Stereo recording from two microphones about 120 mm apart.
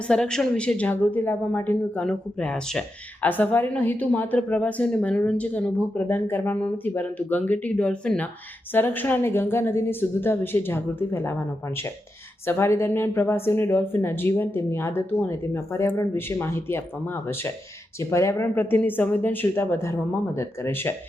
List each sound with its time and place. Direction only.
0.1 s a woman's voice: 5° left (ahead or behind)